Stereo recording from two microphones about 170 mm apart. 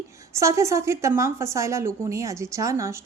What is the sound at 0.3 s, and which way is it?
A woman's voice, 15° right (ahead or behind).